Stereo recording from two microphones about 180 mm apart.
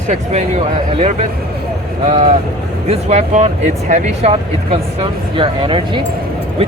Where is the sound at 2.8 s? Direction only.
35° right (ahead or behind).